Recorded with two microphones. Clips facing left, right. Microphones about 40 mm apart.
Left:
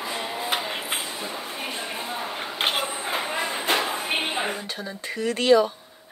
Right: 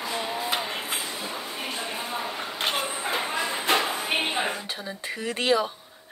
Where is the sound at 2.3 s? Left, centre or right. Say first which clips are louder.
Left 5 dB; left.